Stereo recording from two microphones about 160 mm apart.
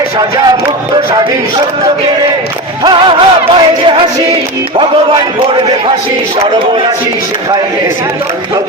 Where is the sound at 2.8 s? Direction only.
30° right (ahead or behind).